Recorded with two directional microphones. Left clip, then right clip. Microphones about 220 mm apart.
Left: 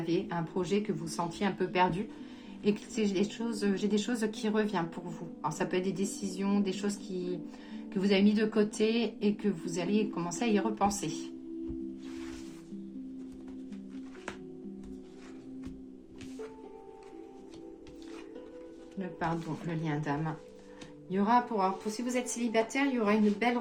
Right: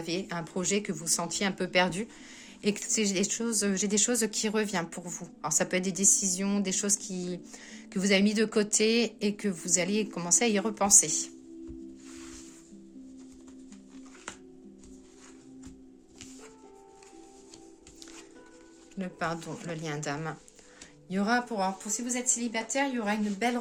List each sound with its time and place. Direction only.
0.1 s a woman's voice: 45° right (ahead or behind)
19.7 s a woman's voice: 45° right (ahead or behind)